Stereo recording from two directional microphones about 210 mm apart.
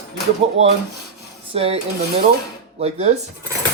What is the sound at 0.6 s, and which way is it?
Dishes, 30° right (ahead or behind).